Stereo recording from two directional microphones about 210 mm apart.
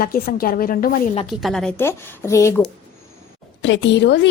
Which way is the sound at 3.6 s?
60° left (ahead or behind).